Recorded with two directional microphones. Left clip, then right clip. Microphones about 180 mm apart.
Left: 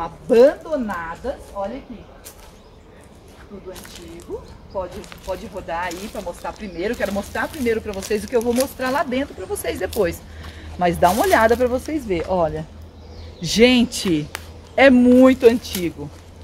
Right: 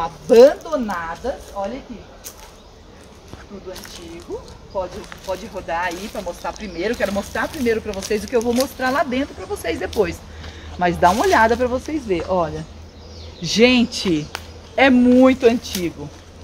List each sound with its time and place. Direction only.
0.0 s speech: 35° right (ahead or behind)
4.3 s speech: 5° left (ahead or behind); by 15.3 s 60° left (ahead or behind)
15.7 s speech: 20° left (ahead or behind)